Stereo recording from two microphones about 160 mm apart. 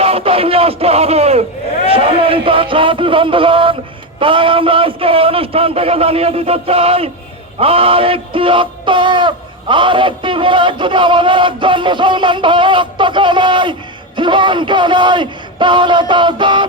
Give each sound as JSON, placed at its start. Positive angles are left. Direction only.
{"t": 0.0, "sound": "a man's voice", "side_deg": -40}